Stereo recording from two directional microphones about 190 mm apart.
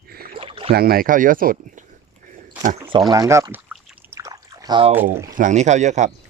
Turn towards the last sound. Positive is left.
turn(degrees=-40)  # may be behind; listen again after turning